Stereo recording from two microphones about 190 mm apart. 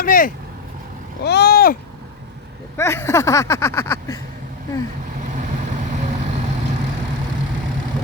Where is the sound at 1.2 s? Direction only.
60° left (ahead or behind).